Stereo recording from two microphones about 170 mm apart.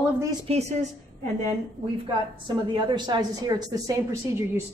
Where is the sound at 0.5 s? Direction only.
40° right (ahead or behind).